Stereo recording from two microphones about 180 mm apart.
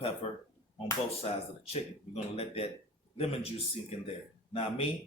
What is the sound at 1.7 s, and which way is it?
Speech, 35° left (ahead or behind).